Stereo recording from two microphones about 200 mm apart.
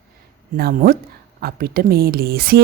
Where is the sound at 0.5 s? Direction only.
50° right (ahead or behind).